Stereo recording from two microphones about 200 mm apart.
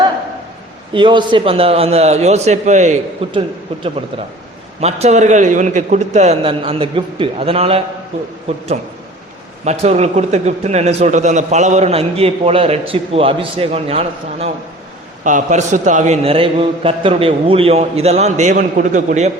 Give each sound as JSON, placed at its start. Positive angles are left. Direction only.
{"t": 0.9, "sound": "a man's voice", "side_deg": -25}
{"t": 4.8, "sound": "a man's voice", "side_deg": -30}
{"t": 15.2, "sound": "a man's voice", "side_deg": -40}